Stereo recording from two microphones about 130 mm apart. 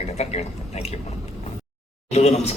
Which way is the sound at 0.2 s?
55° left (ahead or behind).